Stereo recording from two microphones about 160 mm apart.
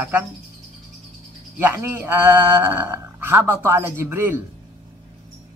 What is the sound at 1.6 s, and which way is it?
Speech, 15° right (ahead or behind).